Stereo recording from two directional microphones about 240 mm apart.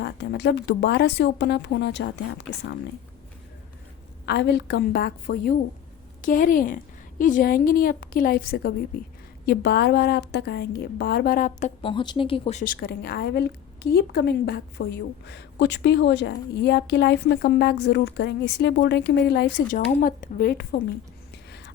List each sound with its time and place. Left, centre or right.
0.0 s a woman's voice: left
4.3 s a woman's voice: left